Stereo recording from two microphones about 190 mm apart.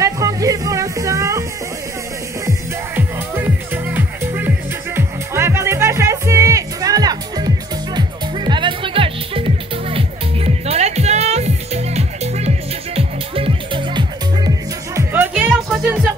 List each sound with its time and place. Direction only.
0.0 s music: 15° right (ahead or behind)
3.0 s music: 10° right (ahead or behind)
15.0 s music: 10° right (ahead or behind)